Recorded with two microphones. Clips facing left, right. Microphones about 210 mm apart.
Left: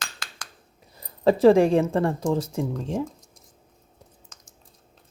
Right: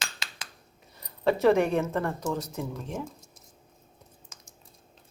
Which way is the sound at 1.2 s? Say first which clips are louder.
Left 6 dB; 30° left (ahead or behind).